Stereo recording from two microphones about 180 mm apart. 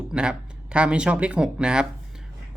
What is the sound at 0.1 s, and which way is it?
Speech, 5° right (ahead or behind).